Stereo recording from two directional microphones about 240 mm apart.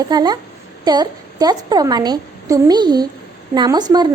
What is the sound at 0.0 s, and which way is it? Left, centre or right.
A woman's voice, centre.